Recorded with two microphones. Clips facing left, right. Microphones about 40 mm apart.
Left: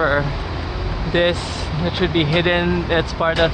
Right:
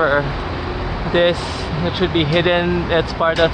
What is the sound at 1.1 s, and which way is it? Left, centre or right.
Speech, centre.